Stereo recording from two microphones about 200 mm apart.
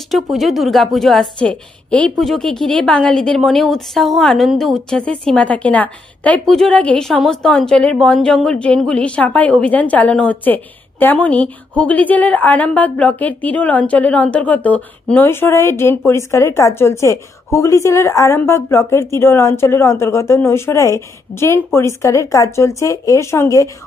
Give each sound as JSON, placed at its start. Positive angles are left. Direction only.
{"t": 0.1, "sound": "a woman's voice", "side_deg": 0}